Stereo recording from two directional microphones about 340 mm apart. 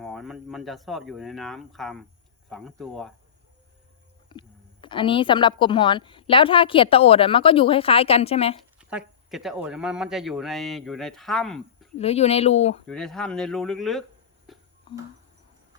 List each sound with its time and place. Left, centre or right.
0.0 s speech: centre
4.3 s a woman's voice: centre
8.8 s speech: centre
11.9 s speech: centre
12.9 s speech: centre
14.5 s music: centre